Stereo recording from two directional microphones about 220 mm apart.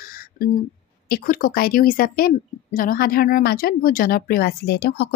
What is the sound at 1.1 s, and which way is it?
A woman's voice, 40° left (ahead or behind).